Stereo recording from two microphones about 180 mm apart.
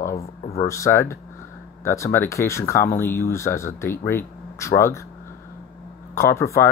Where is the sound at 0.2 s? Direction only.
35° left (ahead or behind).